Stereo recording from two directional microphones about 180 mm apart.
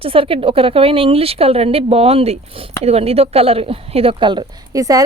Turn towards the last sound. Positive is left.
turn(degrees=-20)  # may be behind; listen again after turning